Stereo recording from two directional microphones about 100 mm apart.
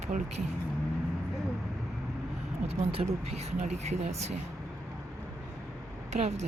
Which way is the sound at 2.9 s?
85° right.